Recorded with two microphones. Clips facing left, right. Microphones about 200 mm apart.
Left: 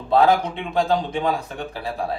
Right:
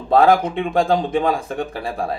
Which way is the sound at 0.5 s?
50° right (ahead or behind).